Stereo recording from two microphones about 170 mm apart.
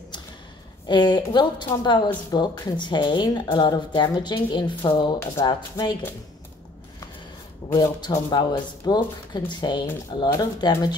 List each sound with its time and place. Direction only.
0.8 s a woman's voice: 25° left (ahead or behind)
7.7 s a woman's voice: 20° left (ahead or behind)